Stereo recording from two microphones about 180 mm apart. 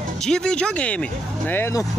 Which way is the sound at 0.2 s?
5° left (ahead or behind).